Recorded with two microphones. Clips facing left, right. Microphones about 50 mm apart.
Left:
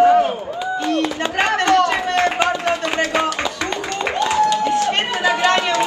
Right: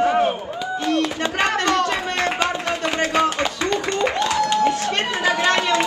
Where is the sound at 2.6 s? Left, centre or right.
Left.